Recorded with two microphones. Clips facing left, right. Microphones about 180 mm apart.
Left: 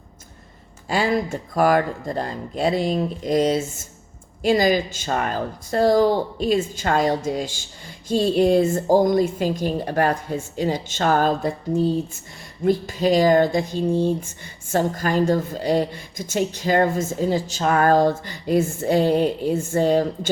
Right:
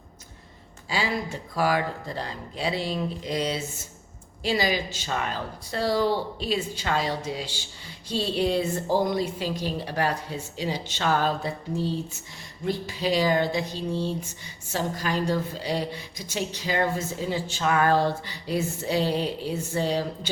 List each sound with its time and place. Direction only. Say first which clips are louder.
0.9 s speech: left 7 dB; 50° left (ahead or behind)
12.6 s speech: left 8 dB; 45° left (ahead or behind)